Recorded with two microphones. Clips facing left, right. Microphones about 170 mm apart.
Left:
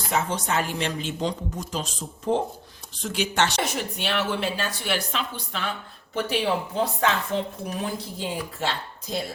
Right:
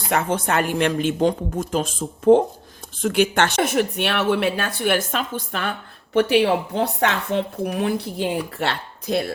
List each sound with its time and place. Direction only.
0.1 s a woman's voice: 55° right (ahead or behind)
6.1 s speech: 70° right (ahead or behind)